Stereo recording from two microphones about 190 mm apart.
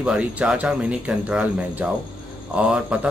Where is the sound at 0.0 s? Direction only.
5° right (ahead or behind).